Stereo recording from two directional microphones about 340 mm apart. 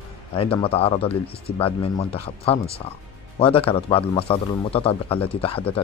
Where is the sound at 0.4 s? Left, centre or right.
Centre.